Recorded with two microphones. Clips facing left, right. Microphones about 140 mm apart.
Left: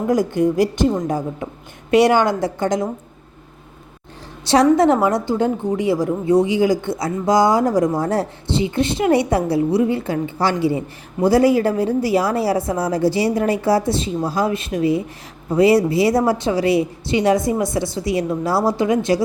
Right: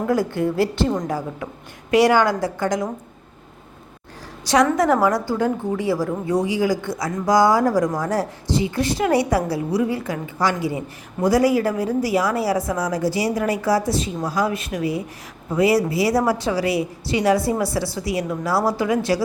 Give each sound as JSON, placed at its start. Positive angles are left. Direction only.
{"t": 0.1, "sound": "a woman's voice", "side_deg": 20}
{"t": 4.4, "sound": "a woman's voice", "side_deg": 30}